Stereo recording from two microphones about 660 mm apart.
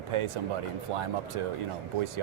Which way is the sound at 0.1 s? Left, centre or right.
Right.